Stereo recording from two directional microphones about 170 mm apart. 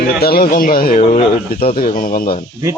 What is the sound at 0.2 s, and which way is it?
Speech, 65° left (ahead or behind).